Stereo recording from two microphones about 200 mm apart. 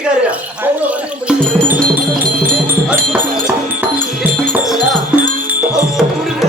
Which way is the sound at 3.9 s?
40° right (ahead or behind).